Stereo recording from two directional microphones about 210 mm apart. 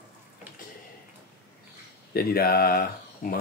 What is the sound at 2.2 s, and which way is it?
Speech, 45° left (ahead or behind).